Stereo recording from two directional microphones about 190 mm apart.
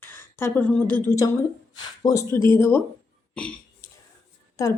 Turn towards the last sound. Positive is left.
turn(degrees=15)  # may be behind; listen again after turning